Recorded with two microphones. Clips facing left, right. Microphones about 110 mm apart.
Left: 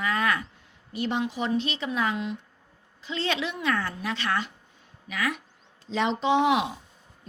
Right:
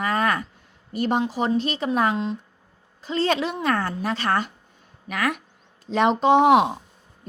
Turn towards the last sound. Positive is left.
turn(degrees=-50)  # may be behind; listen again after turning